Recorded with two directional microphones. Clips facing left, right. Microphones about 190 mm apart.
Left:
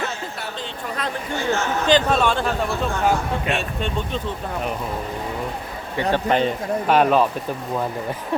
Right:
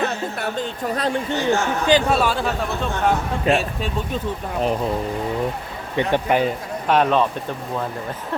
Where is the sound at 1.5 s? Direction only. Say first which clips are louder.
Even; 10° right (ahead or behind).